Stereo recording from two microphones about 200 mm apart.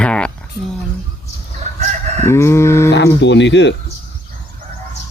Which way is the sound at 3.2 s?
60° left (ahead or behind).